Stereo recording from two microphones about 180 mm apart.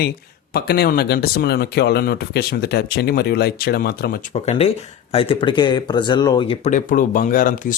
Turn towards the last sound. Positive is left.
turn(degrees=50)  # may be behind; listen again after turning